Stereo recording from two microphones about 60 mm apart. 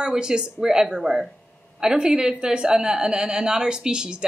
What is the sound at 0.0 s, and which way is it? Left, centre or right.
A woman's voice, centre.